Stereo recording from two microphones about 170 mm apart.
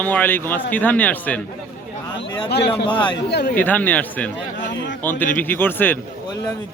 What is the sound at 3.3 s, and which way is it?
Speech, 75° left (ahead or behind).